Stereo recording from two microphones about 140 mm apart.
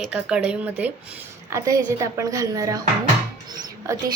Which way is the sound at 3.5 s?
30° right (ahead or behind).